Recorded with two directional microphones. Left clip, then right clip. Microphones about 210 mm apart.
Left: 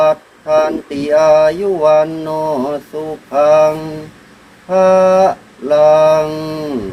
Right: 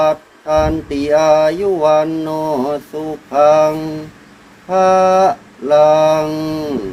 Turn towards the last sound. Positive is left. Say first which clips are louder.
# left 1 dB
turn(degrees=-30)  # may be behind; listen again after turning